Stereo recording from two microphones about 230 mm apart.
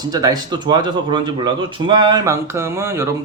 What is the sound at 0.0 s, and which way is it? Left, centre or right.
Speech, centre.